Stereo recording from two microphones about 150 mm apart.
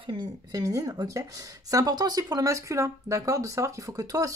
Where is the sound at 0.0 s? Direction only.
25° right (ahead or behind).